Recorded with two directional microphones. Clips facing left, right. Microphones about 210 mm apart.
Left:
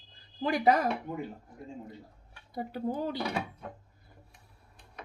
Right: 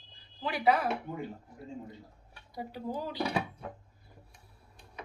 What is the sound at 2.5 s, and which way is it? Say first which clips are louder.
Speech: left 4 dB; 55° left (ahead or behind).